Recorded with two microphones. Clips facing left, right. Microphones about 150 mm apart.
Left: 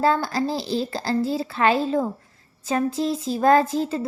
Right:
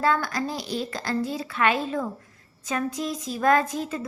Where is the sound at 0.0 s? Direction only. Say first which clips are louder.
Left 3 dB; 30° left (ahead or behind).